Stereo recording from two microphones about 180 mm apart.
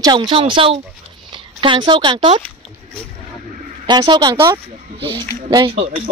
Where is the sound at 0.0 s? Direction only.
25° right (ahead or behind).